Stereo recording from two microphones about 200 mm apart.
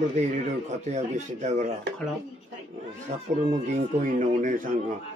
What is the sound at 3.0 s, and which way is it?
Speech, 40° right (ahead or behind).